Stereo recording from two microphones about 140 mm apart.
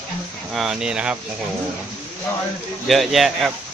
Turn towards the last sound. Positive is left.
turn(degrees=0)  # may be behind; listen again after turning